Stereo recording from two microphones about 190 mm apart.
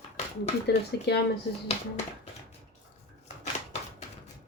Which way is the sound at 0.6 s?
60° left (ahead or behind).